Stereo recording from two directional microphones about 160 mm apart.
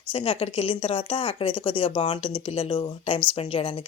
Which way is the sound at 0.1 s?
35° left (ahead or behind).